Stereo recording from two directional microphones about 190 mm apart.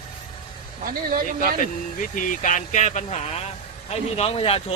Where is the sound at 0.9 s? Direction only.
50° right (ahead or behind).